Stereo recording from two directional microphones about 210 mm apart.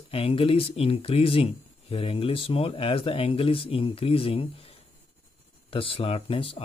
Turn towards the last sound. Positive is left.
turn(degrees=25)  # may be behind; listen again after turning